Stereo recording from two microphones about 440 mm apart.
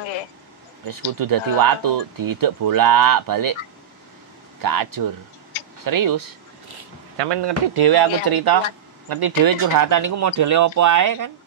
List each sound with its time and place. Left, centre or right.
0.8 s speech: right
4.6 s speech: right
7.2 s speech: right